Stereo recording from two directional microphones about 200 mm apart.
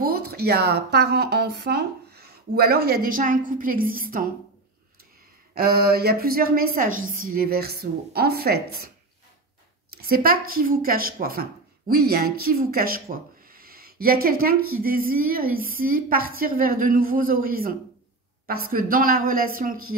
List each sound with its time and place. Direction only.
0.0 s speech: 50° right (ahead or behind)
5.5 s speech: 50° right (ahead or behind)
9.9 s speech: 50° right (ahead or behind)